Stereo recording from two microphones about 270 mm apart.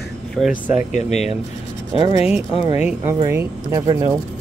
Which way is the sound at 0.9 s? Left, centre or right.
Left.